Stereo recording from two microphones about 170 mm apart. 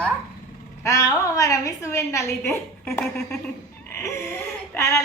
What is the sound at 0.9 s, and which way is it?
A woman's voice, 15° left (ahead or behind).